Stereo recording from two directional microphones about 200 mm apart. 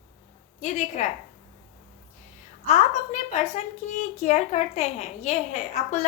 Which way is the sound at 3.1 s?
35° left (ahead or behind).